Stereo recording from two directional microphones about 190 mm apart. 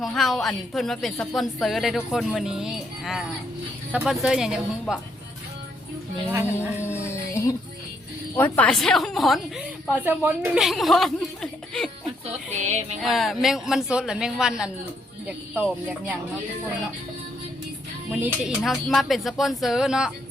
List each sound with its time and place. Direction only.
0.0 s a woman's voice: centre (ahead or behind)
6.3 s speech: 10° right (ahead or behind)
7.0 s music: 15° left (ahead or behind)
8.4 s a woman's voice: 10° left (ahead or behind)
9.9 s a woman's voice: 10° right (ahead or behind)
12.2 s music: 35° right (ahead or behind)
13.0 s a woman's voice: centre (ahead or behind)
18.1 s a woman's voice: 5° right (ahead or behind)